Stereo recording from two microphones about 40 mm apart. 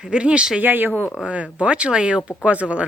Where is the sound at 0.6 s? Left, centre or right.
Right.